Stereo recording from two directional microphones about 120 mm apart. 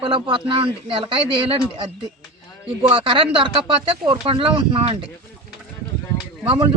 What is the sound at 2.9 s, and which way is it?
Speech, 45° right (ahead or behind).